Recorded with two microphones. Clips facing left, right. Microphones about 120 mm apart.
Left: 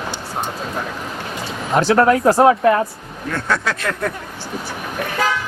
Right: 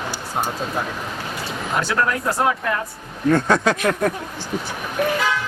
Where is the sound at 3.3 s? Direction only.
20° right (ahead or behind).